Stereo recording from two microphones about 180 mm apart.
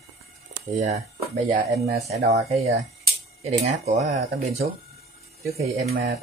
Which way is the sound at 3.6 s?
40° right (ahead or behind).